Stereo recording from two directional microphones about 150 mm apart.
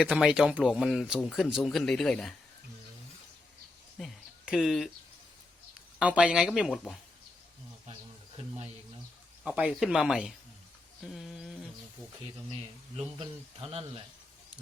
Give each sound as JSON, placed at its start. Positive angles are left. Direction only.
{"t": 0.0, "sound": "speech", "side_deg": 0}
{"t": 3.9, "sound": "a sound", "side_deg": 0}
{"t": 6.0, "sound": "speech", "side_deg": -10}
{"t": 9.4, "sound": "speech", "side_deg": -5}
{"t": 13.0, "sound": "speech", "side_deg": -40}